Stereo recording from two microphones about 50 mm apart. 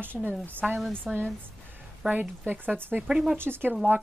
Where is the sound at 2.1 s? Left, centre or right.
Right.